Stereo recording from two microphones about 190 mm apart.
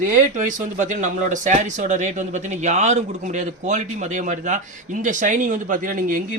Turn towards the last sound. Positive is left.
turn(degrees=-45)  # may be behind; listen again after turning